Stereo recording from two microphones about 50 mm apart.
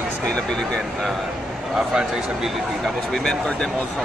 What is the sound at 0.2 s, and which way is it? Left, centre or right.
Speech, centre.